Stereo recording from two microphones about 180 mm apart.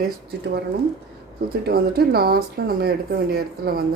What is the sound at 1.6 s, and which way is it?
Speech, 60° right (ahead or behind).